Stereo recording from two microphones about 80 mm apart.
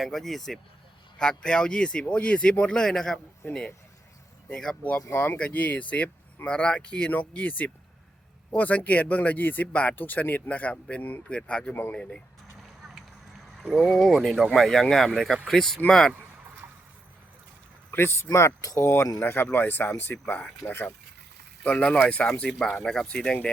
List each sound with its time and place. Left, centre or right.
0.0 s speech: centre
4.4 s speech: centre
5.1 s speech: left; by 11.7 s centre
11.7 s speech: left
13.6 s speech: centre
17.9 s speech: left
18.6 s speech: left
19.2 s speech: left
20.6 s speech: left
21.6 s speech: centre